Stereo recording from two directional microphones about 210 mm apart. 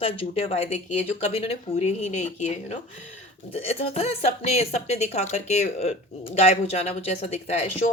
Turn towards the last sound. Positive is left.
turn(degrees=30)  # may be behind; listen again after turning